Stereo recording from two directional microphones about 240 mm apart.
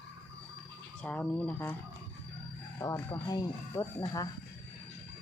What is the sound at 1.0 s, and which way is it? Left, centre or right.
Speech, centre.